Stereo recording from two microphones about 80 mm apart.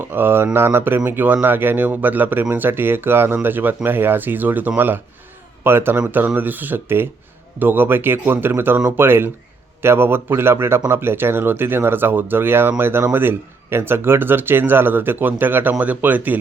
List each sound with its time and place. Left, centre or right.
0.1 s speech: right